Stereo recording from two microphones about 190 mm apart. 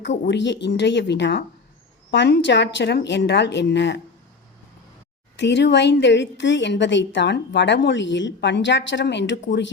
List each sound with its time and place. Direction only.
0.3 s a woman's voice: 70° left (ahead or behind)
5.4 s a woman's voice: 65° left (ahead or behind)